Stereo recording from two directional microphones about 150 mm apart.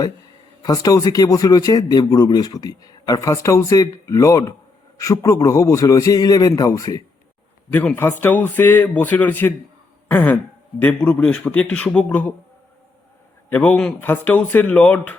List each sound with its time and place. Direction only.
0.6 s a man's voice: 25° left (ahead or behind)
10.1 s a sound: 10° left (ahead or behind)
10.8 s a man's voice: 10° left (ahead or behind)
13.5 s a man's voice: 10° left (ahead or behind)